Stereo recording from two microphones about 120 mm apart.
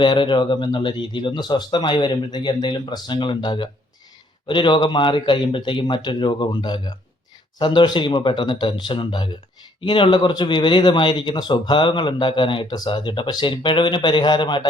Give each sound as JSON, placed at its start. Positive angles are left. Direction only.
{"t": 0.0, "sound": "speech", "side_deg": 40}